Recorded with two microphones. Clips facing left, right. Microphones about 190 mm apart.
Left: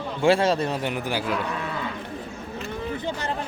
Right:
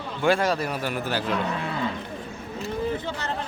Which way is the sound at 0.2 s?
25° left (ahead or behind).